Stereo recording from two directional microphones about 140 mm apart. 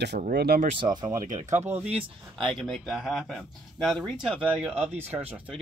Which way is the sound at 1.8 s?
40° right (ahead or behind).